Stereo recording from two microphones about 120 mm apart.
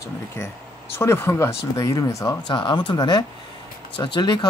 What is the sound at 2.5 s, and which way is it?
Speech, 40° left (ahead or behind).